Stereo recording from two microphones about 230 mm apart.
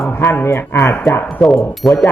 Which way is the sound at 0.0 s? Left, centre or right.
Centre.